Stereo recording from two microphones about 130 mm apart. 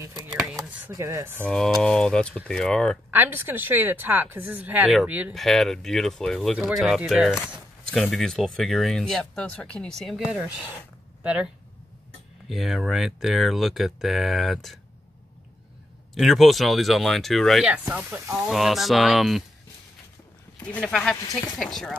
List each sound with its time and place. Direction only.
0.0 s a sound: 20° right (ahead or behind)
0.3 s a sound: centre (ahead or behind)
0.9 s speech: 25° right (ahead or behind)
1.5 s speech: 5° left (ahead or behind)
3.1 s a woman's voice: 15° right (ahead or behind)
5.3 s speech: centre (ahead or behind)
12.4 s speech: centre (ahead or behind)
16.2 s speech: centre (ahead or behind)
17.6 s a woman's voice: 10° right (ahead or behind)
18.3 s speech: centre (ahead or behind)
20.5 s speech: 10° left (ahead or behind)